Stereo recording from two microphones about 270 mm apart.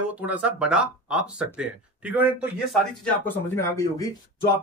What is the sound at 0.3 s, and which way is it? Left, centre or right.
Speech, centre.